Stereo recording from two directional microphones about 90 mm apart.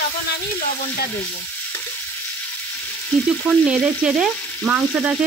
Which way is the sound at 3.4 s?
10° right (ahead or behind).